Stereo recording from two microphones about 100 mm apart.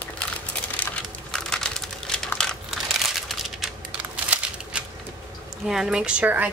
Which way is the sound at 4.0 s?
15° right (ahead or behind).